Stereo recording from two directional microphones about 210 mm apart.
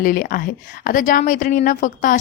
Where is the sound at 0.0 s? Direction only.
45° left (ahead or behind).